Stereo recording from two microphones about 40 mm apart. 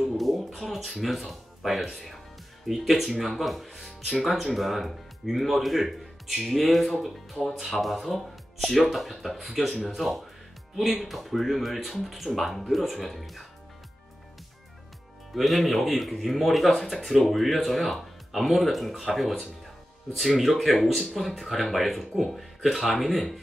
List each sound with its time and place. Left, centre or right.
0.2 s speech: centre
15.3 s speech: centre